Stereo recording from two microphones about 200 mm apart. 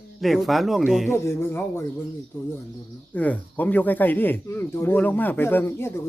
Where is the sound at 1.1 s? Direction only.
10° left (ahead or behind).